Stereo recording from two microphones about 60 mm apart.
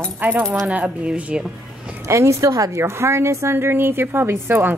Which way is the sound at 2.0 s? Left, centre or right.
Right.